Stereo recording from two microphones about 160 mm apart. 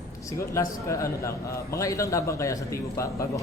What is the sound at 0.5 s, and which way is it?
A man's voice, 20° left (ahead or behind).